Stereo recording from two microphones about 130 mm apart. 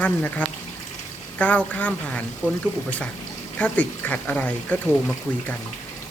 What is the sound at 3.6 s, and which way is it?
A man's voice, 10° left (ahead or behind).